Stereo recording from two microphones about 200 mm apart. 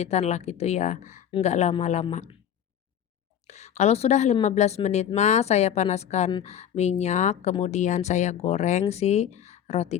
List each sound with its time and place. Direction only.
0.0 s a woman's voice: 35° left (ahead or behind)
3.4 s a woman's voice: 35° left (ahead or behind)